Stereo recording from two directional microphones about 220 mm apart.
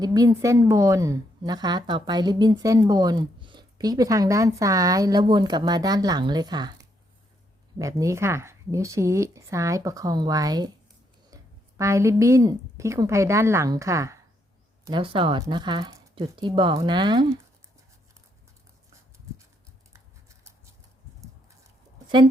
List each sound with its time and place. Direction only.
0.0 s a woman's voice: 15° right (ahead or behind)
11.8 s a woman's voice: 15° right (ahead or behind)